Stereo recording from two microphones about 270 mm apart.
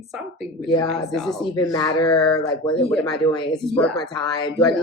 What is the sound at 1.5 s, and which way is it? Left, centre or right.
Speech, centre.